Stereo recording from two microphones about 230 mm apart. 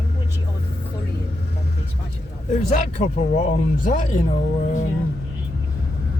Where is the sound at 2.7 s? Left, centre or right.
Left.